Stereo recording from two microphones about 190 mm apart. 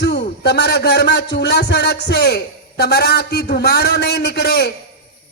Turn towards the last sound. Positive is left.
turn(degrees=60)  # may be behind; listen again after turning